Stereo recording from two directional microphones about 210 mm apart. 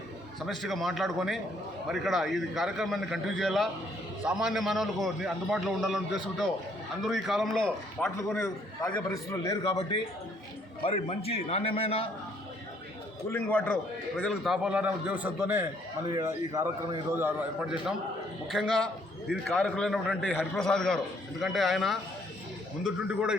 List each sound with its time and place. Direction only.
0.3 s a man's voice: centre (ahead or behind); by 10.0 s 20° left (ahead or behind)
10.8 s a man's voice: 30° left (ahead or behind)
13.3 s a man's voice: 5° left (ahead or behind)